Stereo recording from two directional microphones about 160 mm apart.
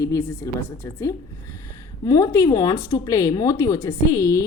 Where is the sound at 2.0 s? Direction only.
20° left (ahead or behind).